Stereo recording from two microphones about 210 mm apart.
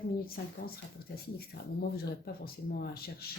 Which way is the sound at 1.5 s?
50° left (ahead or behind).